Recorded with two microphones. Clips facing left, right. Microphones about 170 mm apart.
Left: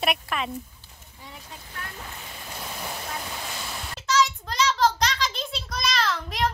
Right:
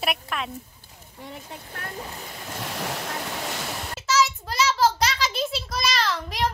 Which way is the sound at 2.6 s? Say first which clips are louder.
Right 4 dB; 80° right.